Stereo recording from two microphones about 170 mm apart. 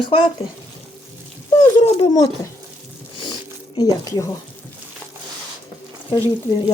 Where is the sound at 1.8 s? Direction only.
35° left (ahead or behind).